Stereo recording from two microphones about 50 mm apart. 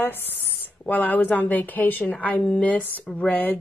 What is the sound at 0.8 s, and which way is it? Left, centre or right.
Speech, left.